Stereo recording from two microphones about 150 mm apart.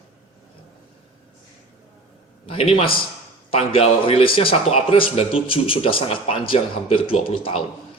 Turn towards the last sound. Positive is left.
turn(degrees=35)  # may be behind; listen again after turning